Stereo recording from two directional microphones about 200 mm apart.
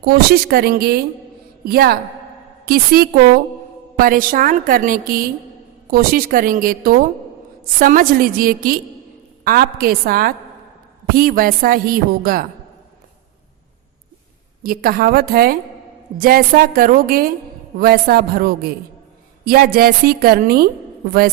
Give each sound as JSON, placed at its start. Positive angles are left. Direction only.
{"t": 0.0, "sound": "a woman's voice", "side_deg": -50}
{"t": 14.6, "sound": "a woman's voice", "side_deg": -45}